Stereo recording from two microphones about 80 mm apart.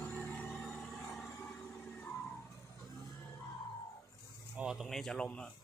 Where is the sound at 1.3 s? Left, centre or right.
Left.